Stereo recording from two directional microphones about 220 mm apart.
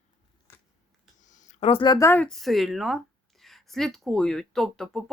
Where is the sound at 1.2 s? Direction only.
35° left (ahead or behind).